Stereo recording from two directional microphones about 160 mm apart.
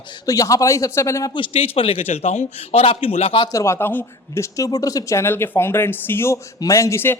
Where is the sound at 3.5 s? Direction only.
15° left (ahead or behind).